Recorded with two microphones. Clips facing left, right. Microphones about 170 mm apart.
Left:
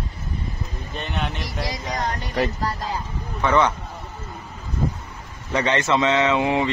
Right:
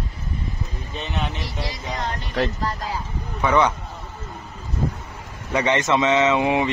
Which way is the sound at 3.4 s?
10° right (ahead or behind).